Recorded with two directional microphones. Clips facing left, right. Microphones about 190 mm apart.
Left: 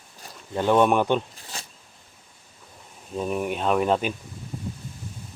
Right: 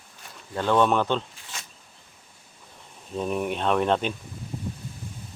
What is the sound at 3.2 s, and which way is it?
Speech, 5° left (ahead or behind).